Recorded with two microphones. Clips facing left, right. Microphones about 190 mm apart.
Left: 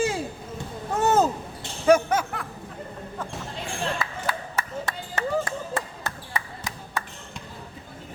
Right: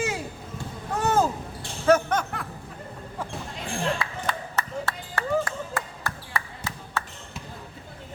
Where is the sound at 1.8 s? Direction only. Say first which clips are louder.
Left 2 dB; 10° left (ahead or behind).